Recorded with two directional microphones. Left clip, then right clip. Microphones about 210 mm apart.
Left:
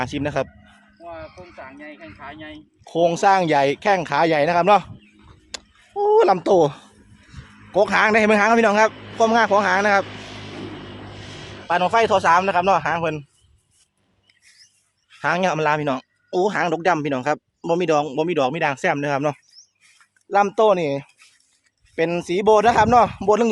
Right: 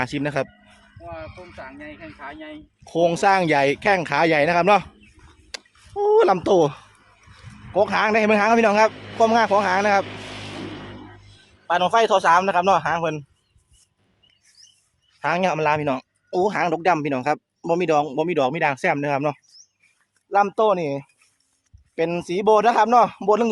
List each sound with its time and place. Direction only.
0.0 s speech: 5° left (ahead or behind)
7.7 s speech: 20° left (ahead or behind)
8.9 s speech: 55° right (ahead or behind)
9.1 s speech: 10° left (ahead or behind)
10.1 s vehicle: 25° right (ahead or behind)
11.3 s a sound: 20° left (ahead or behind)
11.7 s speech: 5° left (ahead or behind)
15.2 s speech: 10° left (ahead or behind)